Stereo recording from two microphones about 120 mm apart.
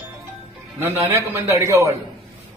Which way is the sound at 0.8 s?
20° right (ahead or behind).